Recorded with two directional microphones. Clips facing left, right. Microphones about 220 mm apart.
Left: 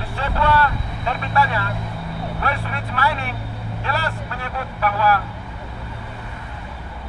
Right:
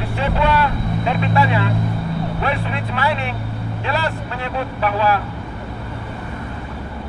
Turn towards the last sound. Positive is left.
turn(degrees=-25)  # may be behind; listen again after turning